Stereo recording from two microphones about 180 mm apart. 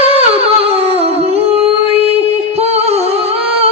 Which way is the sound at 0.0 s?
35° right (ahead or behind).